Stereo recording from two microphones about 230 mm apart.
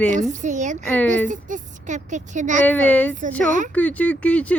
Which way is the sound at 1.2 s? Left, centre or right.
Right.